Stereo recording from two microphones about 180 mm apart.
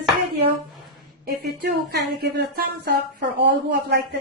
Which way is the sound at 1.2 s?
60° right (ahead or behind).